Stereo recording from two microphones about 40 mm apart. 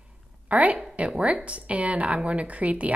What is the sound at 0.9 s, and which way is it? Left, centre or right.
A woman's voice, right.